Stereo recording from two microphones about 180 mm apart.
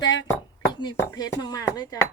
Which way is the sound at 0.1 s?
90° left.